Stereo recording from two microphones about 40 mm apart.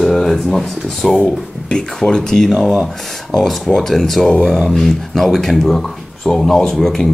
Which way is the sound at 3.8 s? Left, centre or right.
Centre.